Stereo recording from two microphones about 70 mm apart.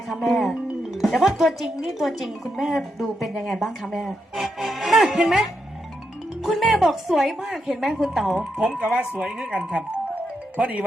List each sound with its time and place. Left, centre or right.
0.1 s speech: centre
8.8 s speech: centre